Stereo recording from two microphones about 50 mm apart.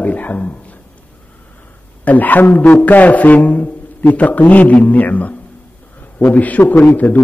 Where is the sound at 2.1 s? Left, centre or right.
Left.